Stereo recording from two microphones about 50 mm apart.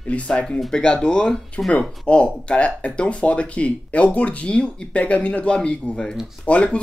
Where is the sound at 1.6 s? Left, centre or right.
Left.